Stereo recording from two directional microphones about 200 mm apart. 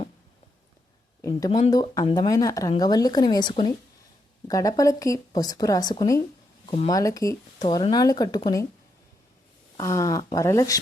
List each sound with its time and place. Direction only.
1.2 s a woman's voice: 15° left (ahead or behind)
9.7 s speech: 15° left (ahead or behind)